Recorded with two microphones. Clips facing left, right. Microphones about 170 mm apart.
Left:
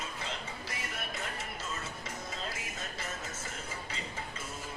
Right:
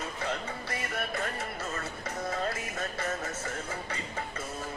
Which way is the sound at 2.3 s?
60° right (ahead or behind).